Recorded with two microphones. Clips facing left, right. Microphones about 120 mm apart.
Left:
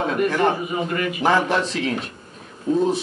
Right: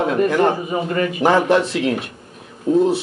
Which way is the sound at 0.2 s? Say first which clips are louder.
Right 2 dB; 35° right (ahead or behind).